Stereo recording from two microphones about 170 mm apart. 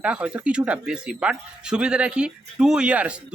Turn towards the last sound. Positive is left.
turn(degrees=-5)  # may be behind; listen again after turning